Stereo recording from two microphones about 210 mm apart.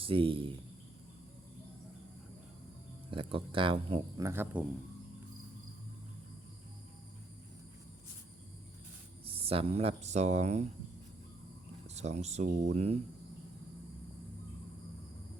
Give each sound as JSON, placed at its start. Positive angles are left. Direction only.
{"t": 0.0, "sound": "speech", "side_deg": -25}
{"t": 3.1, "sound": "speech", "side_deg": -25}
{"t": 4.3, "sound": "speech", "side_deg": -10}
{"t": 9.2, "sound": "speech", "side_deg": -25}
{"t": 11.9, "sound": "speech", "side_deg": -30}